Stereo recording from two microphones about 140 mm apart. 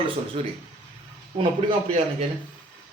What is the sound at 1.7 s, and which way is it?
Speech, 50° right (ahead or behind).